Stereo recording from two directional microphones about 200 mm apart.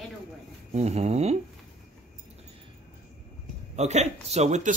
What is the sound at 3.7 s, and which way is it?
Speech, 35° right (ahead or behind).